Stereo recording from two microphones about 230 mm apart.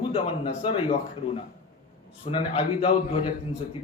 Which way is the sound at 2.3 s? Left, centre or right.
Left.